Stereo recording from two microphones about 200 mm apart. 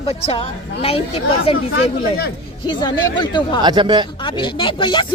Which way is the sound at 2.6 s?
20° left (ahead or behind).